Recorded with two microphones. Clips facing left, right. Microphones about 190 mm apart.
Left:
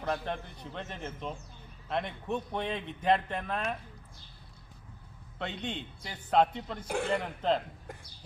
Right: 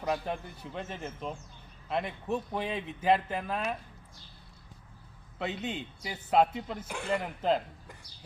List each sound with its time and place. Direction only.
0.0 s speech: 5° right (ahead or behind)
5.4 s speech: 5° right (ahead or behind)
6.8 s a man's voice: 55° left (ahead or behind)
7.1 s speech: 5° right (ahead or behind)